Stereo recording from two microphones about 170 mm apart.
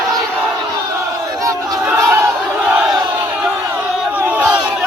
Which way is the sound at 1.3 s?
20° right (ahead or behind).